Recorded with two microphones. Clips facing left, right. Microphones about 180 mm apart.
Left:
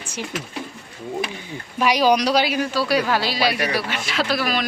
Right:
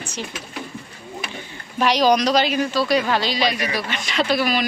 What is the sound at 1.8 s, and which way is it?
Speech, 10° left (ahead or behind).